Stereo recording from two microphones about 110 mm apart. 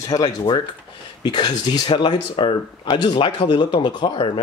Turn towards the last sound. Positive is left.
turn(degrees=45)  # may be behind; listen again after turning